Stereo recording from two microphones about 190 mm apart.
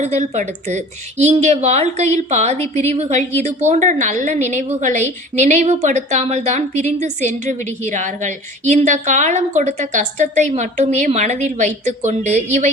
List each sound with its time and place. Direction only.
0.0 s a woman's voice: 35° right (ahead or behind)